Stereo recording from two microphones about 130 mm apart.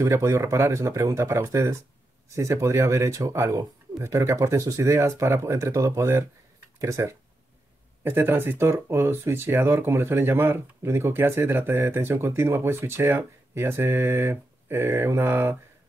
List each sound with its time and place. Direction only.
0.0 s speech: 20° right (ahead or behind)